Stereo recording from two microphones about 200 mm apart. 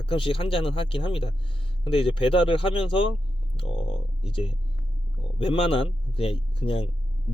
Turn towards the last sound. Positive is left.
turn(degrees=30)  # may be behind; listen again after turning